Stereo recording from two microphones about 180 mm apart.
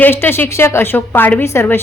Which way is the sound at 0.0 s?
10° left (ahead or behind).